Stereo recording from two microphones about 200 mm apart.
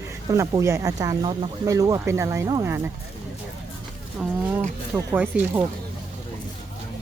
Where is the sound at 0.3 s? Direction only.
15° right (ahead or behind).